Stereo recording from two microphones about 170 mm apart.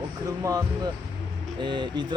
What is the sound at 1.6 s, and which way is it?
Speech, 30° right (ahead or behind).